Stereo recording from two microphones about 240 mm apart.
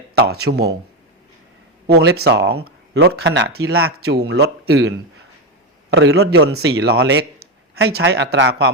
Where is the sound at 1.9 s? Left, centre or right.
Right.